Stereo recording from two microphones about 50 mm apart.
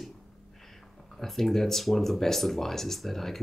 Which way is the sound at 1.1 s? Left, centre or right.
Centre.